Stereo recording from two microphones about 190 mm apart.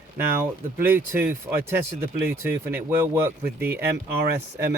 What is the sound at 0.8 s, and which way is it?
Speech, 10° right (ahead or behind).